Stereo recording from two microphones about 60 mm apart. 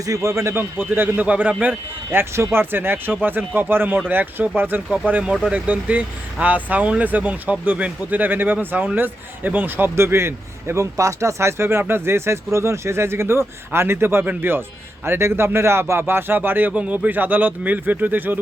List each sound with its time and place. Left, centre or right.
0.0 s speech: right
0.5 s speech: right
2.0 s a man's voice: right
10.9 s a man's voice: right
16.7 s speech: right